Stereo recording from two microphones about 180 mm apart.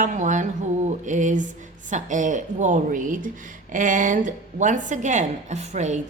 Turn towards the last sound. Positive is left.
turn(degrees=-40)  # may be behind; listen again after turning